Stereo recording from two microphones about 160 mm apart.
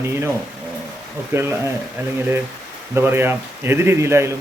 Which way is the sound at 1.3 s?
15° right (ahead or behind).